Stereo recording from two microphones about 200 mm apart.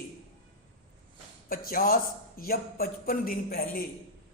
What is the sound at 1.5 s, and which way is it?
A man's voice, 45° left (ahead or behind).